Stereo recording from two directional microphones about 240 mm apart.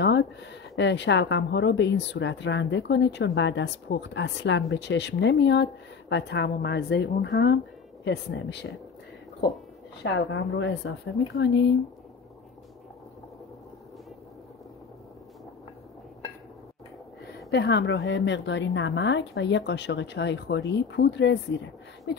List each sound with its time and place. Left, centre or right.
0.0 s speech: left
10.0 s speech: left
17.5 s speech: left